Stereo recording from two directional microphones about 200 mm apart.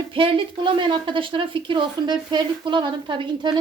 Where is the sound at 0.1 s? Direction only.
25° right (ahead or behind).